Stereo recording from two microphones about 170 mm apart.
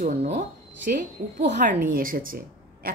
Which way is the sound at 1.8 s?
55° right (ahead or behind).